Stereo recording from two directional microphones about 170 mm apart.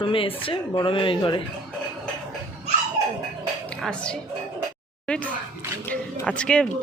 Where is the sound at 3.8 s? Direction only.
5° left (ahead or behind).